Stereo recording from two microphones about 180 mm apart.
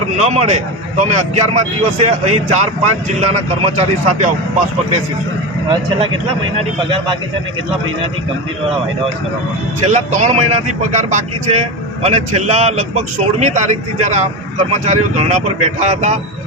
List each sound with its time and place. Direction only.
0.2 s speech: 40° right (ahead or behind)
9.8 s speech: 40° right (ahead or behind)